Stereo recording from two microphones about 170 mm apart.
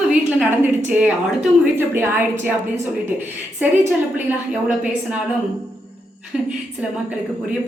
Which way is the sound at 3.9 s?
5° right (ahead or behind).